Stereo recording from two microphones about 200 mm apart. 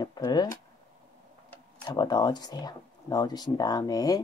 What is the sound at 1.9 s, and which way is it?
Speech, 20° left (ahead or behind).